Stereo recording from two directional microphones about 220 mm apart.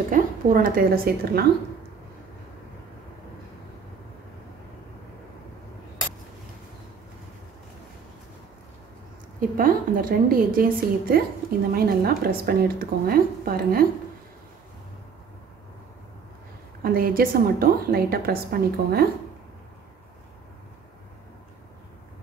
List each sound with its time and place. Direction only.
0.1 s a woman's voice: 40° right (ahead or behind)
9.4 s a woman's voice: 40° right (ahead or behind)
16.8 s a woman's voice: 40° right (ahead or behind)